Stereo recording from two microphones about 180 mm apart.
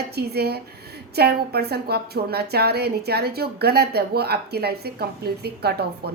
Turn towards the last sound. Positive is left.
turn(degrees=-60)  # may be behind; listen again after turning